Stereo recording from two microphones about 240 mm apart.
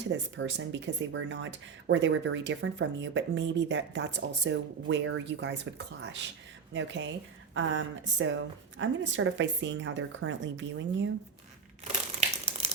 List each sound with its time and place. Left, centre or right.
0.0 s speech: right